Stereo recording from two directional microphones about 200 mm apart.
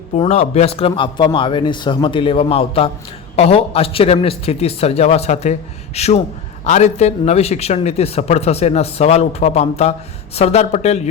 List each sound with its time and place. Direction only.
0.2 s a man's voice: 30° left (ahead or behind)